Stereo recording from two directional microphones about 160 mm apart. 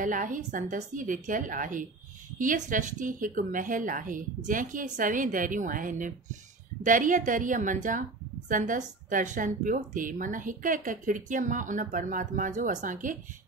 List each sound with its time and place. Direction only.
0.0 s a woman's voice: 55° right (ahead or behind)